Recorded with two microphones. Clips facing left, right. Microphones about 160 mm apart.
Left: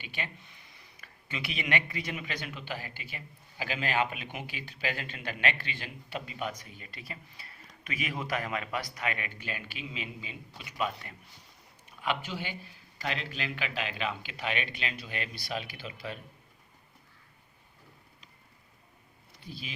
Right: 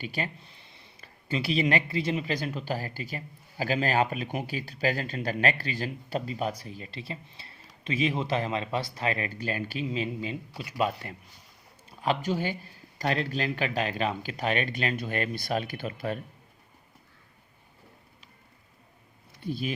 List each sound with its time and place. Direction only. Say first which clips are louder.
0.0 s speech: right 7 dB; 40° right (ahead or behind)
19.4 s speech: right 12 dB; 50° right (ahead or behind)